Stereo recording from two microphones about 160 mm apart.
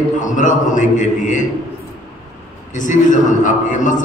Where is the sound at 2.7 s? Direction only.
50° left (ahead or behind).